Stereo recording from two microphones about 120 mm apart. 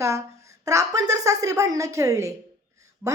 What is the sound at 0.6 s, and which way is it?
A woman's voice, 30° right (ahead or behind).